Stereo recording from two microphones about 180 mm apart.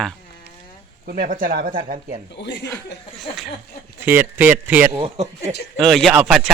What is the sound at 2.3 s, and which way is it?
Speech, 75° left (ahead or behind).